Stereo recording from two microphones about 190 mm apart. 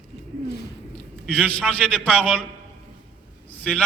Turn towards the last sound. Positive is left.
turn(degrees=5)  # may be behind; listen again after turning